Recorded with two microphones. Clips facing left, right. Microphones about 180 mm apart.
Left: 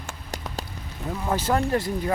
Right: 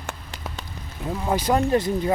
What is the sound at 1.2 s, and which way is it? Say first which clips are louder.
Speech: right 2 dB; 15° right (ahead or behind).